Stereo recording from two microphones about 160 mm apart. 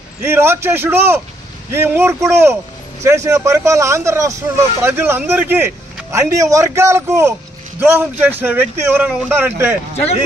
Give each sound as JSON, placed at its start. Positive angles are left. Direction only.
{"t": 0.2, "sound": "speech", "side_deg": -15}
{"t": 9.9, "sound": "speech", "side_deg": 40}